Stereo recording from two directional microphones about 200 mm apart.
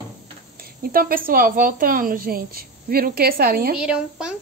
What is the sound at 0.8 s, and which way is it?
A woman's voice, 45° right (ahead or behind).